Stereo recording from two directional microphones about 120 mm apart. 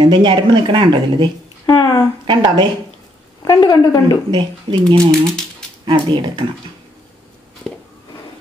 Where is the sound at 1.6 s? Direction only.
30° left (ahead or behind).